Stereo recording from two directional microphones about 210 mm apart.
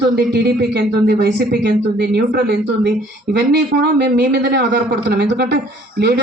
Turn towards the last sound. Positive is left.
turn(degrees=-55)  # may be behind; listen again after turning